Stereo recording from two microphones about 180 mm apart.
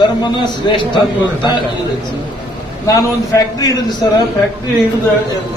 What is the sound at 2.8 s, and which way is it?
A man's voice, 15° left (ahead or behind).